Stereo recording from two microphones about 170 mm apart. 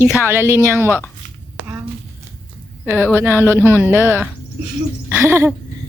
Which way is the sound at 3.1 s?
10° right (ahead or behind).